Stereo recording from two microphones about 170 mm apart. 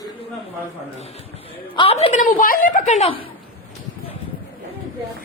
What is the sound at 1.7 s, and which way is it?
A woman's voice, 35° left (ahead or behind).